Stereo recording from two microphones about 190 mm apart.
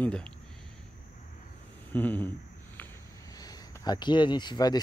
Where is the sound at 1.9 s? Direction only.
10° left (ahead or behind).